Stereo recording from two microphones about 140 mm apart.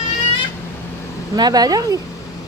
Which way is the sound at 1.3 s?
30° right (ahead or behind).